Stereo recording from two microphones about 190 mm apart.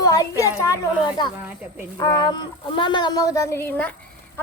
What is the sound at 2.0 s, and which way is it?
Speech, 20° left (ahead or behind).